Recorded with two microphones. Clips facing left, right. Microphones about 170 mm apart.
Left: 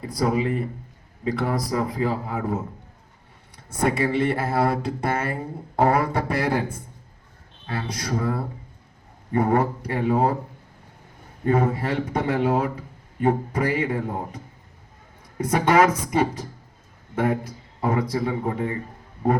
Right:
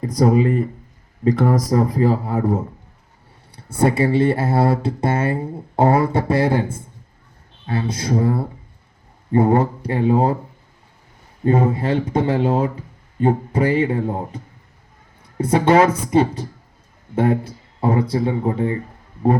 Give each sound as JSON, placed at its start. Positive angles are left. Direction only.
{"t": 0.0, "sound": "speech", "side_deg": -40}
{"t": 7.7, "sound": "speech", "side_deg": -25}
{"t": 11.4, "sound": "speech", "side_deg": -25}